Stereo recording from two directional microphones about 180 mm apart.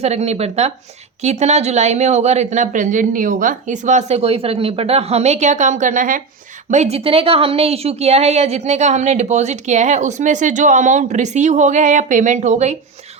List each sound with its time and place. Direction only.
0.0 s a woman's voice: 35° right (ahead or behind)